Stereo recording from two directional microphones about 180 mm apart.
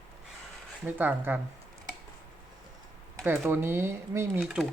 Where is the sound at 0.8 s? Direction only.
10° right (ahead or behind).